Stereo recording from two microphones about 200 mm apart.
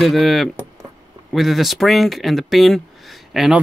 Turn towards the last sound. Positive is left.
turn(degrees=0)  # may be behind; listen again after turning